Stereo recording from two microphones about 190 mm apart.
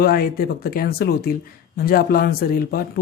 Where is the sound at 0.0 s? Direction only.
50° left (ahead or behind).